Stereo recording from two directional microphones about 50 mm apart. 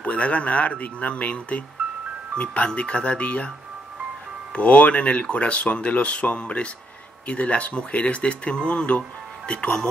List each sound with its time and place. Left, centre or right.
0.0 s speech: left
4.6 s speech: left